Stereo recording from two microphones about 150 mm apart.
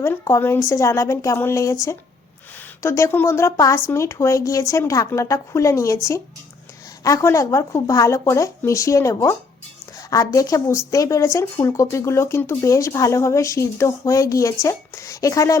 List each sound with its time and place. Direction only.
0.0 s speech: 15° left (ahead or behind)